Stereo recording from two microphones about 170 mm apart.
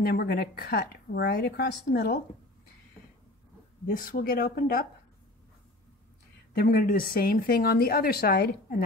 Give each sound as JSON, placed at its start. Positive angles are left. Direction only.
{"t": 0.0, "sound": "speech", "side_deg": 65}
{"t": 3.8, "sound": "a woman's voice", "side_deg": 60}
{"t": 6.6, "sound": "a woman's voice", "side_deg": 55}